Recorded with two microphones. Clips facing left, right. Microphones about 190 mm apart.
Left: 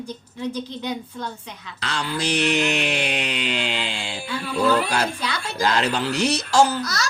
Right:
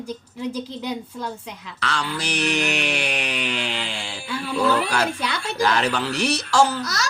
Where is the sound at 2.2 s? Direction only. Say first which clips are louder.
Left 4 dB; 25° left (ahead or behind).